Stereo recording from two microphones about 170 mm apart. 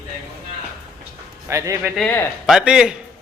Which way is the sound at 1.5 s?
15° right (ahead or behind).